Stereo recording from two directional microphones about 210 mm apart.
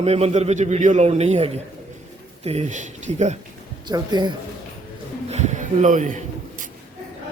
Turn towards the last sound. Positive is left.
turn(degrees=-35)  # may be behind; listen again after turning